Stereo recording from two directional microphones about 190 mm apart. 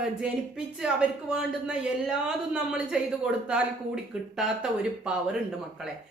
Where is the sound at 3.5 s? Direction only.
5° right (ahead or behind).